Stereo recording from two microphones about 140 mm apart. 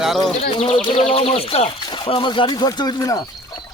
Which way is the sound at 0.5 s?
45° left (ahead or behind).